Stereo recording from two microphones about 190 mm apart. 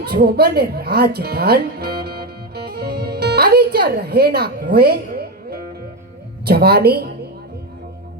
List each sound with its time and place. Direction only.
0.0 s music: 55° right (ahead or behind)
6.4 s a woman's voice: 55° right (ahead or behind)